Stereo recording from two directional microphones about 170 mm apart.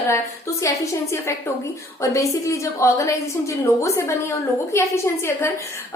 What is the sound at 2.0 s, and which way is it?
A woman's voice, 20° left (ahead or behind).